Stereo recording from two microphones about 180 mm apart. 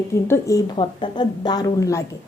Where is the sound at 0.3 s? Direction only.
15° left (ahead or behind).